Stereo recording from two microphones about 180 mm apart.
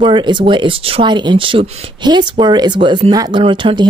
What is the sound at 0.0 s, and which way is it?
A woman's voice, 25° right (ahead or behind).